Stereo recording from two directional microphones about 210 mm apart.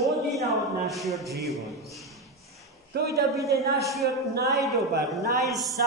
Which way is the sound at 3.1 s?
15° right (ahead or behind).